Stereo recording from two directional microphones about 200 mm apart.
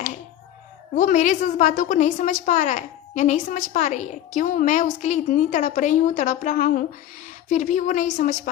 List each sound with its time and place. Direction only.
0.9 s a woman's voice: 40° left (ahead or behind)